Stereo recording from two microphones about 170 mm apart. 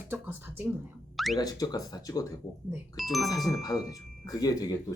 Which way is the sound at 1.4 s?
20° left (ahead or behind).